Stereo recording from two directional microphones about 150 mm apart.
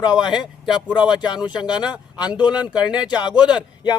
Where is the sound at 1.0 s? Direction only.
5° right (ahead or behind).